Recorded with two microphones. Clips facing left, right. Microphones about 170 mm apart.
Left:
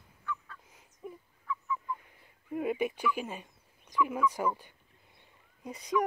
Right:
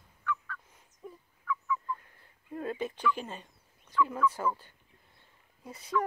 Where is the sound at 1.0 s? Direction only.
10° left (ahead or behind).